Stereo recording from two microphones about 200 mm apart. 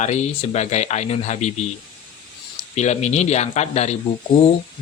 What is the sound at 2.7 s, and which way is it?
Speech, 35° left (ahead or behind).